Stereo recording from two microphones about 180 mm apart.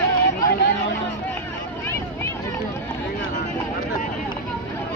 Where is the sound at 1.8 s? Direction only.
15° left (ahead or behind).